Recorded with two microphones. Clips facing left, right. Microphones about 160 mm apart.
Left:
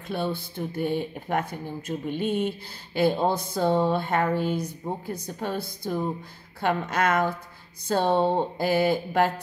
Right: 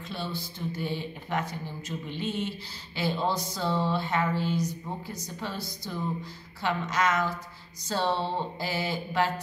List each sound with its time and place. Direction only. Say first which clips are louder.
0.1 s speech: left 8 dB; 55° left (ahead or behind)